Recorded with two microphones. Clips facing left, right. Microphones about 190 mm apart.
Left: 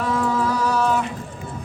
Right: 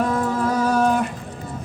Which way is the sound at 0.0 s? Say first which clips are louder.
Right 1 dB; 45° right (ahead or behind).